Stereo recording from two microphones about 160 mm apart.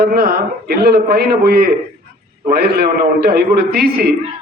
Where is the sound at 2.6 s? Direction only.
85° right.